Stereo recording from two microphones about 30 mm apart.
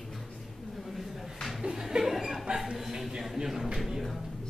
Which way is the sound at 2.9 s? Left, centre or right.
Centre.